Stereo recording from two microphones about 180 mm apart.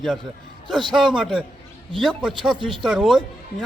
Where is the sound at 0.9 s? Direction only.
5° right (ahead or behind).